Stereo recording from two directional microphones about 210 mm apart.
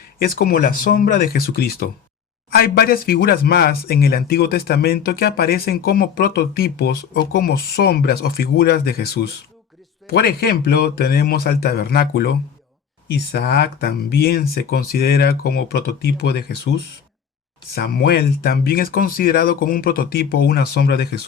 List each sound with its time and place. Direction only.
0.2 s speech: 45° left (ahead or behind)
17.7 s speech: 50° left (ahead or behind)